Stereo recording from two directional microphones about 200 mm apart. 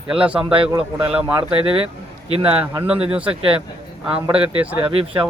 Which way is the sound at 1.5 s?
30° right (ahead or behind).